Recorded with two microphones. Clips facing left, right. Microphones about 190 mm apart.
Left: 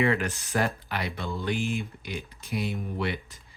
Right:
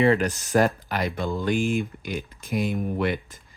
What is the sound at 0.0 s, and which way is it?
Speech, 35° right (ahead or behind).